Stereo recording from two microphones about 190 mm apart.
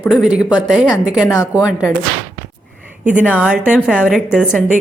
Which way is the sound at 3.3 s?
5° right (ahead or behind).